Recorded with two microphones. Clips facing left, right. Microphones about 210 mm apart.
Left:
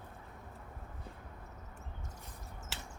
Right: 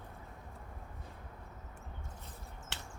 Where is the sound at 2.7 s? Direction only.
Centre (ahead or behind).